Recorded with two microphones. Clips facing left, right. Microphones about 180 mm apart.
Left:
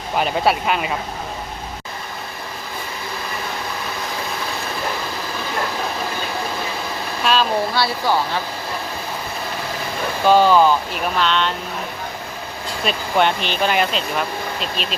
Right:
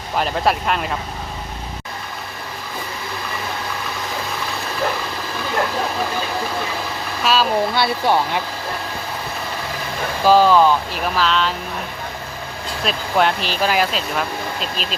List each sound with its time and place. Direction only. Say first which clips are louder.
0.2 s speech: left 1 dB; 5° left (ahead or behind)
7.3 s speech: even; 5° right (ahead or behind)
7.8 s speech: right 2 dB; 20° right (ahead or behind)
10.2 s speech: right 1 dB; centre (ahead or behind)
12.8 s speech: even; centre (ahead or behind)